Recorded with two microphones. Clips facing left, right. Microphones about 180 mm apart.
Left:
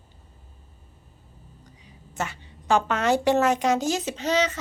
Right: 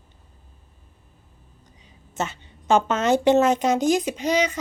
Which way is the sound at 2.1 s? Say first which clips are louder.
Right 3 dB; 25° right (ahead or behind).